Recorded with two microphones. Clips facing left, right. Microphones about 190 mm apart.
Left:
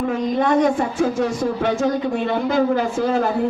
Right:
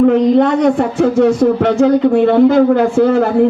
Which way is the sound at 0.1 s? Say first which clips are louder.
Right 8 dB; 65° right (ahead or behind).